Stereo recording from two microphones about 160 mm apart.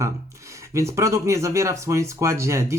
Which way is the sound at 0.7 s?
20° right (ahead or behind).